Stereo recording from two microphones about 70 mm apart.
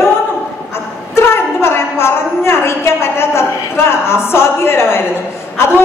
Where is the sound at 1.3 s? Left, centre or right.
Left.